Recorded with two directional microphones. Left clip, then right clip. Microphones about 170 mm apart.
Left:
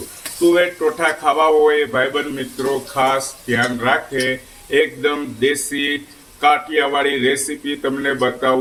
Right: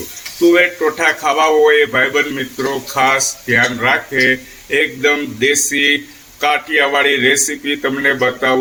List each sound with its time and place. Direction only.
0.3 s speech: 20° right (ahead or behind)